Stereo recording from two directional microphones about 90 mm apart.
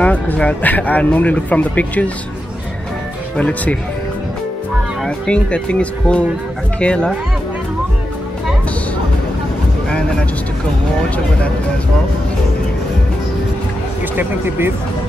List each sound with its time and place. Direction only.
0.0 s speech: 15° left (ahead or behind)
3.3 s speech: 10° left (ahead or behind)
5.0 s speech: 10° left (ahead or behind)
14.1 s speech: 25° right (ahead or behind)